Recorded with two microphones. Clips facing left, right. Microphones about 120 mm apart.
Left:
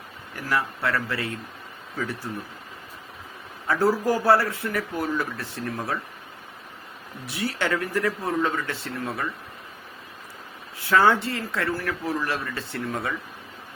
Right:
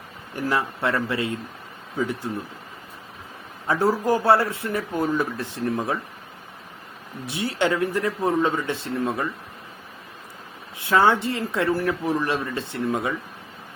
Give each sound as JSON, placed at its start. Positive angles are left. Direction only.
{"t": 0.3, "sound": "speech", "side_deg": -25}
{"t": 3.7, "sound": "speech", "side_deg": -20}
{"t": 7.3, "sound": "speech", "side_deg": -20}
{"t": 10.8, "sound": "speech", "side_deg": -25}